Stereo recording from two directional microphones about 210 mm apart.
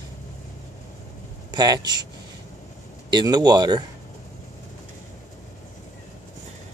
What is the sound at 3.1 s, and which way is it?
Speech, 20° right (ahead or behind).